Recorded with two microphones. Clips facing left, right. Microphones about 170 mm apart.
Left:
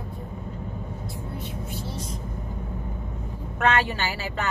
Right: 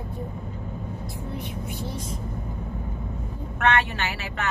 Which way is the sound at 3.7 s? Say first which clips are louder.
Left 1 dB; 30° left (ahead or behind).